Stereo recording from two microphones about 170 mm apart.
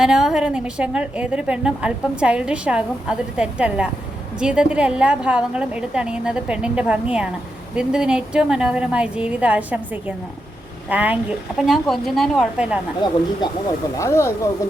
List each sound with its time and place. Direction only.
0.0 s a woman's voice: 5° right (ahead or behind)
13.0 s speech: 25° left (ahead or behind)